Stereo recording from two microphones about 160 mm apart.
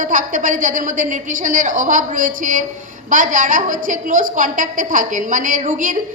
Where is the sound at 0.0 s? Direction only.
55° right (ahead or behind).